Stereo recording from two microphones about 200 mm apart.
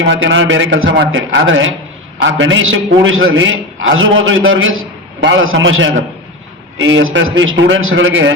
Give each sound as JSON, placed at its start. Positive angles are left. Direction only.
{"t": 0.0, "sound": "a man's voice", "side_deg": -65}